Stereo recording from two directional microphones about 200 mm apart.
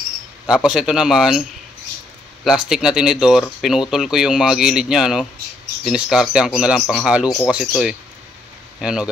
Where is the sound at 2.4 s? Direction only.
5° right (ahead or behind).